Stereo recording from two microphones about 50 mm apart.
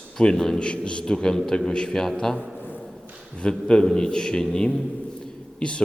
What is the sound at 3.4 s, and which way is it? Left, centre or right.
A man's voice, centre.